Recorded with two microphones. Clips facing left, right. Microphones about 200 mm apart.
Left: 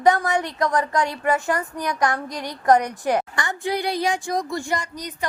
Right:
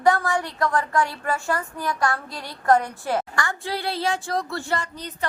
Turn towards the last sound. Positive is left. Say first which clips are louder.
# left 1 dB
turn(degrees=15)  # may be behind; listen again after turning